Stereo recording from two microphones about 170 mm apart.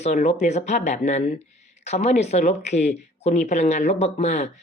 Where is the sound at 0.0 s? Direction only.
45° left (ahead or behind).